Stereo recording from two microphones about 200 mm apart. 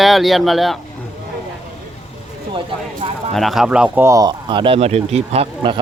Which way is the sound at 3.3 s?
Centre (ahead or behind).